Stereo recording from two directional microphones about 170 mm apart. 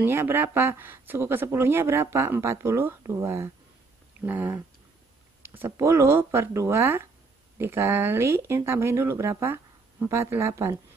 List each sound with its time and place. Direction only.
0.0 s speech: 15° right (ahead or behind)